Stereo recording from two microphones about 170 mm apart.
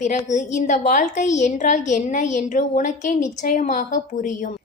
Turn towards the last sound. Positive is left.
turn(degrees=45)  # may be behind; listen again after turning